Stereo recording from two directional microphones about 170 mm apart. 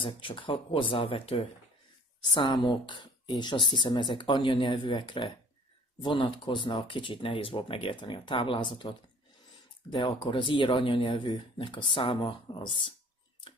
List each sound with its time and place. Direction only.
0.0 s speech: 30° left (ahead or behind)